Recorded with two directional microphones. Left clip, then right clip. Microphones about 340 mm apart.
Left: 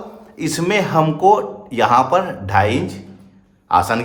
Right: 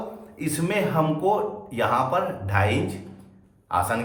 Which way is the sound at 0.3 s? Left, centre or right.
Centre.